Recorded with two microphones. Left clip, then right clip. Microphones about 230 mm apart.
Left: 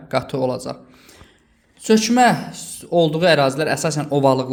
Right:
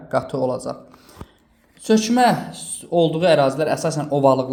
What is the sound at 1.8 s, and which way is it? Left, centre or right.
Speech, left.